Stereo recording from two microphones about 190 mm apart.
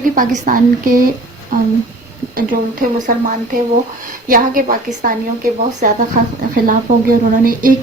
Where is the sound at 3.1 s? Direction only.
45° right (ahead or behind).